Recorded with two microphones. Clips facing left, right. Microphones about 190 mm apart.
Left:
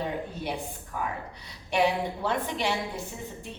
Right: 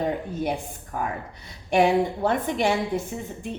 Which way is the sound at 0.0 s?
45° right (ahead or behind).